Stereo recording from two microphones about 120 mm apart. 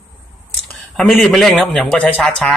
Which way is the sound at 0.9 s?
Centre (ahead or behind).